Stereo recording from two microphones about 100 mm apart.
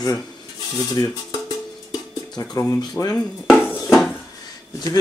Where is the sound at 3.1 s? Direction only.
5° left (ahead or behind).